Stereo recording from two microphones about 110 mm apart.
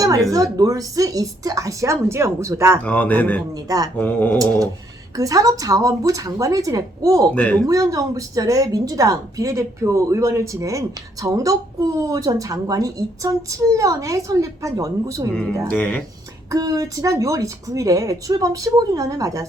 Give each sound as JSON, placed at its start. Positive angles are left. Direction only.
{"t": 0.0, "sound": "a woman's voice", "side_deg": -35}
{"t": 2.8, "sound": "a man's voice", "side_deg": 15}
{"t": 3.5, "sound": "a woman's voice", "side_deg": -35}
{"t": 3.9, "sound": "a man's voice", "side_deg": 15}
{"t": 5.1, "sound": "a woman's voice", "side_deg": -30}
{"t": 7.3, "sound": "a man's voice", "side_deg": 10}
{"t": 7.7, "sound": "a woman's voice", "side_deg": -30}
{"t": 15.7, "sound": "a man's voice", "side_deg": 15}
{"t": 16.5, "sound": "a woman's voice", "side_deg": -30}